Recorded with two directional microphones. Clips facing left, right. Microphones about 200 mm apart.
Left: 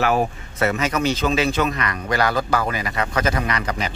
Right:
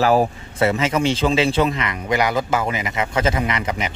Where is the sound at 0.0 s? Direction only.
30° right (ahead or behind).